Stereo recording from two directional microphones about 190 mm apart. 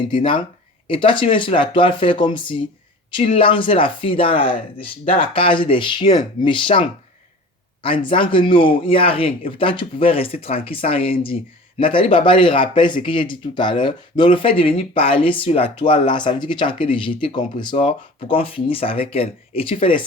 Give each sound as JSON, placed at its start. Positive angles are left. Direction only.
{"t": 0.1, "sound": "speech", "side_deg": 25}